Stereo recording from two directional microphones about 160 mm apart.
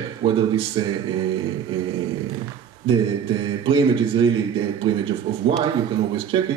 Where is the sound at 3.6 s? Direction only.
30° right (ahead or behind).